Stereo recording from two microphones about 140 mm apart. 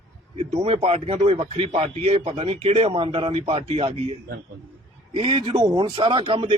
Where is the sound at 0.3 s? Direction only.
45° right (ahead or behind).